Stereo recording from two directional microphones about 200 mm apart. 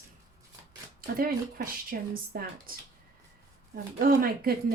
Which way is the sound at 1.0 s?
45° right (ahead or behind).